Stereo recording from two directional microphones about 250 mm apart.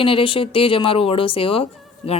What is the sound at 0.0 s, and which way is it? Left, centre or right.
A woman's voice, left.